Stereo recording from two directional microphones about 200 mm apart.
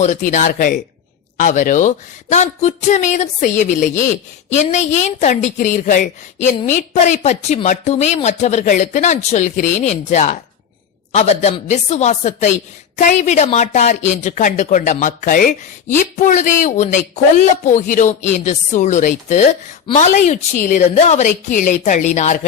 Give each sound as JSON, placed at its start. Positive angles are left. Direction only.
{"t": 0.0, "sound": "speech", "side_deg": 40}